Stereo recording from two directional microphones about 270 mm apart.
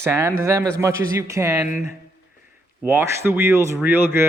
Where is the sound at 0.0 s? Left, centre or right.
Centre.